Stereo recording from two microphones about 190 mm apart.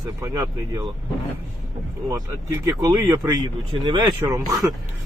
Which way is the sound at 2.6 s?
15° right (ahead or behind).